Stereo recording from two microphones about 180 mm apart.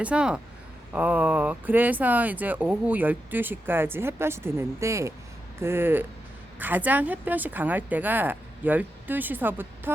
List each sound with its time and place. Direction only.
0.0 s speech: 5° right (ahead or behind)